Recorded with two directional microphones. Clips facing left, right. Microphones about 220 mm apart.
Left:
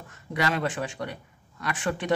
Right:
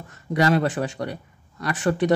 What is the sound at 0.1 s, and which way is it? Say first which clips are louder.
Speech: right 8 dB; 40° right (ahead or behind).